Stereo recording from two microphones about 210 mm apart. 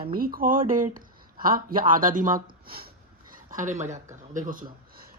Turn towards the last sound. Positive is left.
turn(degrees=-40)  # may be behind; listen again after turning